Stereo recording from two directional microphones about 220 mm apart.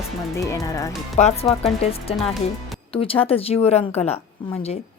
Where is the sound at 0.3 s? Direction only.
15° left (ahead or behind).